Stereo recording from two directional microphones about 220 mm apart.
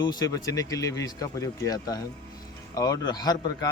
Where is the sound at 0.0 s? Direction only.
20° left (ahead or behind).